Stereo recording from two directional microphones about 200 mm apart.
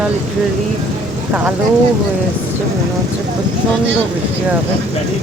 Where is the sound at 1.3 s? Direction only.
10° right (ahead or behind).